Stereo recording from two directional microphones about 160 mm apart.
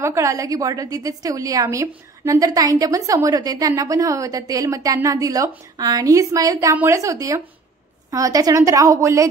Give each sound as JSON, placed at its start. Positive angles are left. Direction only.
{"t": 0.0, "sound": "a woman's voice", "side_deg": -20}